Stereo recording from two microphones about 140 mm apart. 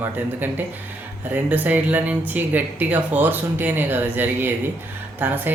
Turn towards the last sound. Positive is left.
turn(degrees=-15)  # may be behind; listen again after turning